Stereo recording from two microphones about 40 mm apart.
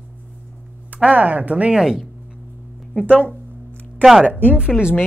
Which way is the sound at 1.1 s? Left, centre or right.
Right.